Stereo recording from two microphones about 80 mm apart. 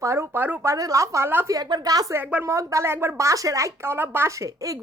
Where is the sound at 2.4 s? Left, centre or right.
Right.